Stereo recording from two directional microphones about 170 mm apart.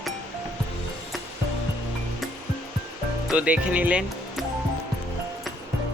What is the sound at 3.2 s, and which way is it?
Speech, 10° right (ahead or behind).